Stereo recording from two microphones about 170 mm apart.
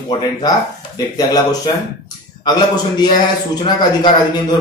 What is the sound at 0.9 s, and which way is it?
Speech, 20° left (ahead or behind).